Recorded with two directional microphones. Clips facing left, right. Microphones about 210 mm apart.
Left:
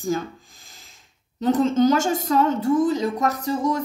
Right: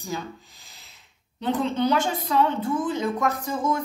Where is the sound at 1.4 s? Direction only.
45° left (ahead or behind).